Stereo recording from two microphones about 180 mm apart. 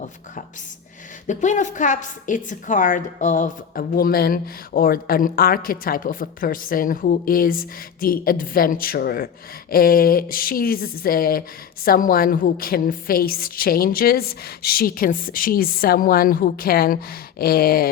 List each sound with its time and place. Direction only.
1.3 s a woman's voice: 45° left (ahead or behind)